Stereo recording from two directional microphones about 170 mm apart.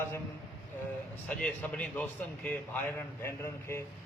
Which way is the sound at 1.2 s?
5° left (ahead or behind).